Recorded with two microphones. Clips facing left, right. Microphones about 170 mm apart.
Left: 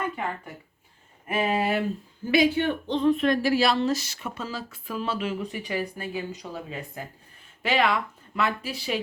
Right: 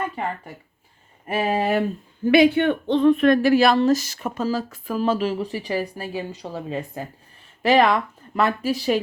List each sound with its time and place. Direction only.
1.3 s speech: 35° right (ahead or behind)
2.2 s speech: 60° right (ahead or behind); by 9.0 s 40° right (ahead or behind)